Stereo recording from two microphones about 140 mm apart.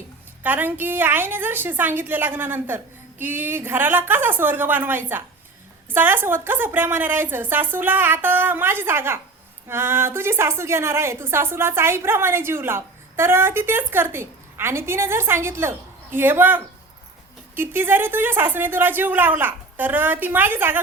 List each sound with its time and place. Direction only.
0.4 s a woman's voice: 15° right (ahead or behind)